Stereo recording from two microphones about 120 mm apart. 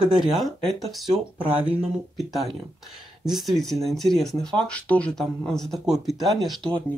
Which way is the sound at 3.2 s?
Centre (ahead or behind).